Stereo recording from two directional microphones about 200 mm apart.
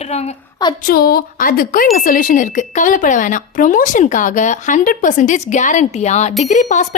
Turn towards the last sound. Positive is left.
turn(degrees=40)  # may be behind; listen again after turning